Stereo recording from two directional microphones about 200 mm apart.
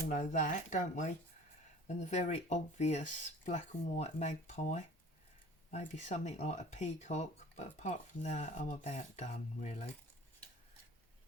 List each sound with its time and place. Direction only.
0.1 s speech: 40° left (ahead or behind)